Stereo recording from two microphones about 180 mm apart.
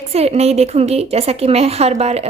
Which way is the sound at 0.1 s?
35° right (ahead or behind).